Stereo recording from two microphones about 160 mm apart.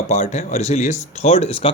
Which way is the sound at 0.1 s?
45° left (ahead or behind).